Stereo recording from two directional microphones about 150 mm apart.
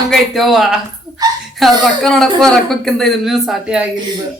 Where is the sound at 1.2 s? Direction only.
25° right (ahead or behind).